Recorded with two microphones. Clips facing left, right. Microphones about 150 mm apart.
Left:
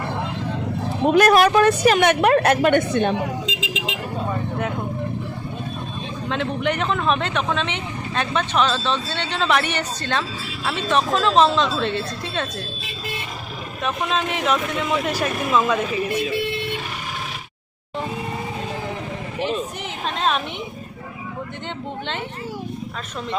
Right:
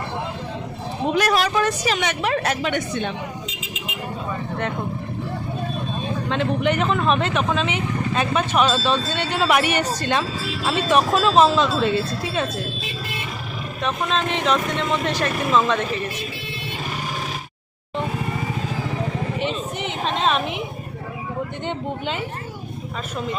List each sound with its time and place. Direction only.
1.1 s a woman's voice: 55° left (ahead or behind)
3.4 s vehicle: 90° left
6.2 s speech: centre (ahead or behind)
13.8 s speech: 5° left (ahead or behind)
19.4 s a sound: centre (ahead or behind)